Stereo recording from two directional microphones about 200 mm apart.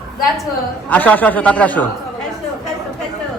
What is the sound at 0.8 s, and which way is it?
A man's voice, 10° left (ahead or behind).